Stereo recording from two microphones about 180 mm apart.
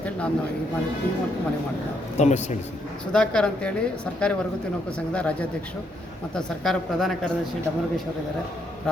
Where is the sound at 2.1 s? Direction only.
40° left (ahead or behind).